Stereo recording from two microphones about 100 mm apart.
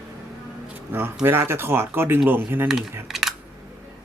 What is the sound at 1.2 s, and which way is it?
Speech, 25° right (ahead or behind).